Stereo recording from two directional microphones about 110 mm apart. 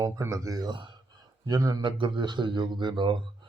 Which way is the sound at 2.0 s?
45° right (ahead or behind).